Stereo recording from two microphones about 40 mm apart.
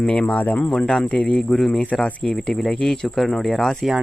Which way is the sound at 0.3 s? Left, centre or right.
Left.